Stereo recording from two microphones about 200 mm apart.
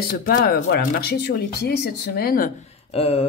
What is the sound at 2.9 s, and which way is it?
Speech, 30° left (ahead or behind).